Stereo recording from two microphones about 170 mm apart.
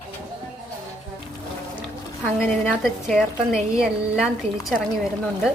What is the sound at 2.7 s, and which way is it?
A woman's voice, centre (ahead or behind).